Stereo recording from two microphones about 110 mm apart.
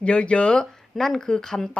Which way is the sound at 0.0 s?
10° left (ahead or behind).